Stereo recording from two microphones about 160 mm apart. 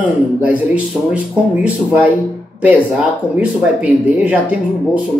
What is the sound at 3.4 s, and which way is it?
Speech, 10° right (ahead or behind).